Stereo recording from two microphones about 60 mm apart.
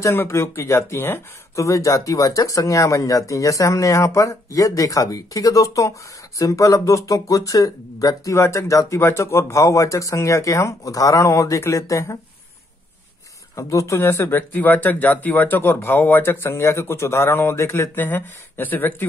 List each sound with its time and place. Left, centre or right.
0.1 s speech: left
1.5 s speech: left
8.4 s speech: left
13.6 s speech: left
17.9 s speech: left